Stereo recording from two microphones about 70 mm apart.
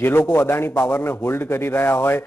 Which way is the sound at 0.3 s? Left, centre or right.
Left.